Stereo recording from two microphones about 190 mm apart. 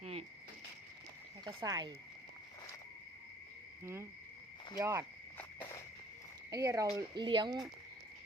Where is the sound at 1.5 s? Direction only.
25° right (ahead or behind).